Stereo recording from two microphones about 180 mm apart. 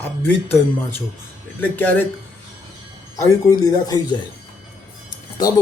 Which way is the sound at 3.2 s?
20° left (ahead or behind).